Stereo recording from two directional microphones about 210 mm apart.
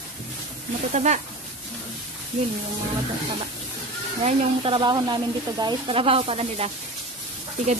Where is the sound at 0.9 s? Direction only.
35° right (ahead or behind).